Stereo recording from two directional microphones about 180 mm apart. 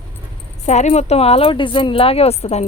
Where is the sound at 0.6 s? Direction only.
40° left (ahead or behind).